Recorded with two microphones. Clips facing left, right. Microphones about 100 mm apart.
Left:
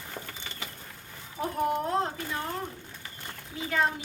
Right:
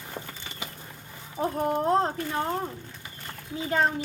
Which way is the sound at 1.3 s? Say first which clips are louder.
Right 2 dB; 35° right (ahead or behind).